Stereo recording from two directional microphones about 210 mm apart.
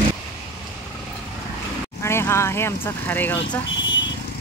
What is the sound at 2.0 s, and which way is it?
Speech, 10° left (ahead or behind).